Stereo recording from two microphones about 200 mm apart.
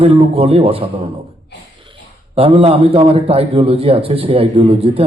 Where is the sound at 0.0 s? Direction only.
30° right (ahead or behind).